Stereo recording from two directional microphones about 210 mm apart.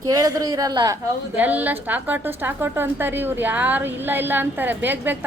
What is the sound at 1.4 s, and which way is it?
A woman's voice, 10° right (ahead or behind).